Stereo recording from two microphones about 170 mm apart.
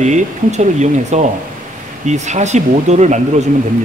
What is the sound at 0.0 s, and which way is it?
Speech, 45° right (ahead or behind).